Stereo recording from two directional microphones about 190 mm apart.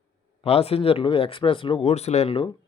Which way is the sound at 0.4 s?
30° left (ahead or behind).